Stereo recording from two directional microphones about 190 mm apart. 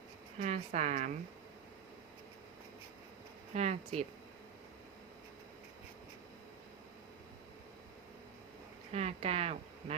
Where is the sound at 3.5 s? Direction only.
35° right (ahead or behind).